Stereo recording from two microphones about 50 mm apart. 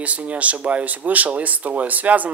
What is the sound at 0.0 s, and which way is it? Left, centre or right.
Speech, right.